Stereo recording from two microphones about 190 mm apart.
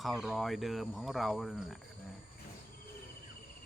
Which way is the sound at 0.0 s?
Centre (ahead or behind).